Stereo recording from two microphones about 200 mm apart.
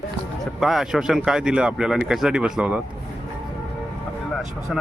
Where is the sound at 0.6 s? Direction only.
Centre (ahead or behind).